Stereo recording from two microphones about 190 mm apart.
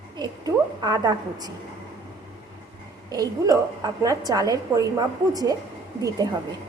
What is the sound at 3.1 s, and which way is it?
A woman's voice, 20° right (ahead or behind).